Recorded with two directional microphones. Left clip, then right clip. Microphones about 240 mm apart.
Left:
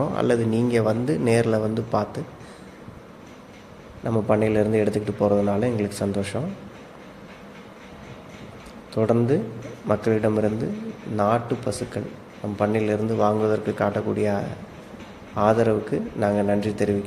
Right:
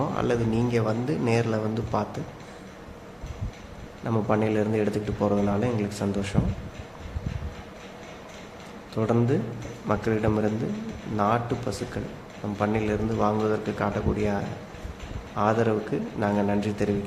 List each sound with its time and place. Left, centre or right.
0.0 s a man's voice: centre
4.0 s a man's voice: centre
9.0 s a man's voice: centre